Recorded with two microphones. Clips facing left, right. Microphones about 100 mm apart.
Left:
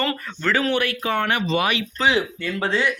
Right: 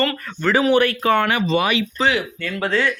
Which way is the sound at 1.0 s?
70° right (ahead or behind).